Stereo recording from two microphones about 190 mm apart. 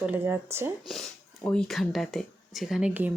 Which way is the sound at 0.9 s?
5° left (ahead or behind).